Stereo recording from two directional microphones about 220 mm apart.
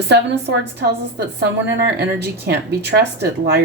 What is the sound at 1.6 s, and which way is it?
A woman's voice, 50° right (ahead or behind).